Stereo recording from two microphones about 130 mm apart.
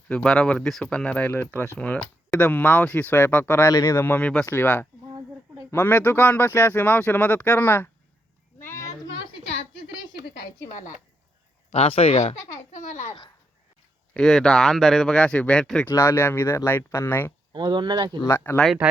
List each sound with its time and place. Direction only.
0.1 s speech: 5° left (ahead or behind)
8.5 s a sound: 20° left (ahead or behind)
11.7 s speech: 50° left (ahead or behind)
12.5 s speech: 70° left (ahead or behind)
14.1 s speech: 5° left (ahead or behind)
15.9 s speech: 20° left (ahead or behind)
17.5 s speech: 35° right (ahead or behind)
18.3 s speech: 15° left (ahead or behind)
18.8 s speech: 15° right (ahead or behind)